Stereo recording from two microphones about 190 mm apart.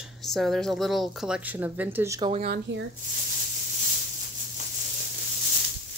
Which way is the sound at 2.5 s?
70° right (ahead or behind).